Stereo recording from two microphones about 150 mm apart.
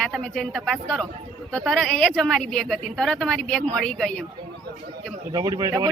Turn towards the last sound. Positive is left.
turn(degrees=-25)  # may be behind; listen again after turning